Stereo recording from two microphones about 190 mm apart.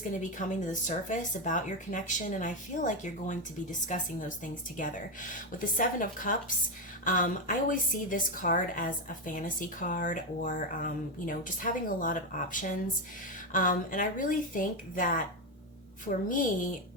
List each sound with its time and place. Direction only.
0.1 s a woman's voice: 40° left (ahead or behind)